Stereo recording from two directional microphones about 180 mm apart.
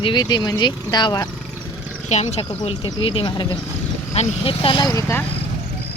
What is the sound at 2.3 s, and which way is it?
Speech, 35° left (ahead or behind).